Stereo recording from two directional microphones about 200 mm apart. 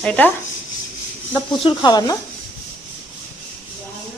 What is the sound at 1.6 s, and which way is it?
Speech, 20° left (ahead or behind).